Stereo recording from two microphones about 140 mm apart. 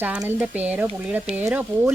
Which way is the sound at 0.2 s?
15° right (ahead or behind).